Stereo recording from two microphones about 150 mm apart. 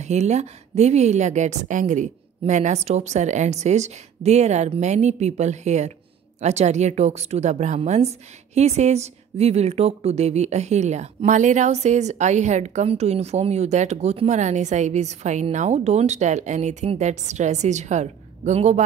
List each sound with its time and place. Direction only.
0.0 s a woman's voice: 50° right (ahead or behind)